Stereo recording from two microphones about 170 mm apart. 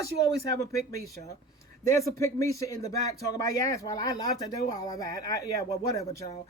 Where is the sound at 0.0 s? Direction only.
85° right.